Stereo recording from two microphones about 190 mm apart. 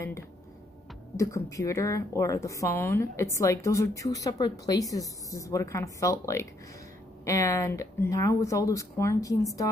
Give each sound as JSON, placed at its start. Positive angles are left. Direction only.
{"t": 1.1, "sound": "a woman's voice", "side_deg": 15}